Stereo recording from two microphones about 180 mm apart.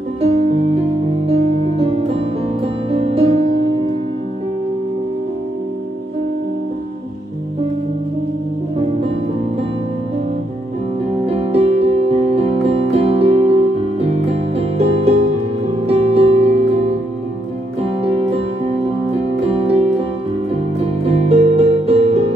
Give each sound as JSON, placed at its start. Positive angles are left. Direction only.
{"t": 0.2, "sound": "music", "side_deg": -35}
{"t": 8.7, "sound": "music", "side_deg": -30}
{"t": 11.2, "sound": "music", "side_deg": -35}